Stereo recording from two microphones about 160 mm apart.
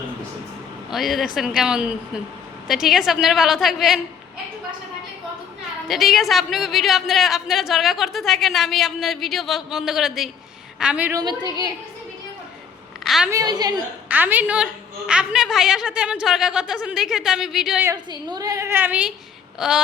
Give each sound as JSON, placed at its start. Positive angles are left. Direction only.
{"t": 0.9, "sound": "a woman's voice", "side_deg": 0}
{"t": 5.9, "sound": "a woman's voice", "side_deg": 0}
{"t": 11.1, "sound": "a woman's voice", "side_deg": -25}
{"t": 13.1, "sound": "a woman's voice", "side_deg": 0}
{"t": 13.3, "sound": "a woman's voice", "side_deg": -25}
{"t": 14.1, "sound": "a woman's voice", "side_deg": -10}
{"t": 17.9, "sound": "a woman's voice", "side_deg": -25}
{"t": 19.5, "sound": "a sound", "side_deg": -5}